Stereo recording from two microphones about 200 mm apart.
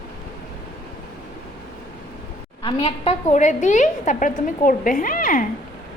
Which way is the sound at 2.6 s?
30° left (ahead or behind).